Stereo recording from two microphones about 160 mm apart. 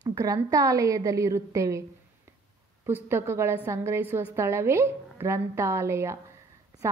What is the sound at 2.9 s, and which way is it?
A woman's voice, 15° right (ahead or behind).